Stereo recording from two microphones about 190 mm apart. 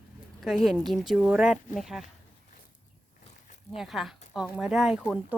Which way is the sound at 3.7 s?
Centre (ahead or behind).